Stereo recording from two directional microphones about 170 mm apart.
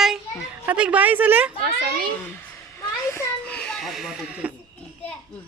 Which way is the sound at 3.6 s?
Centre (ahead or behind).